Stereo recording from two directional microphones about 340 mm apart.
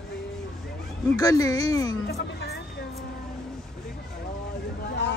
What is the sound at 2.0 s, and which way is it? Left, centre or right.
Music, left.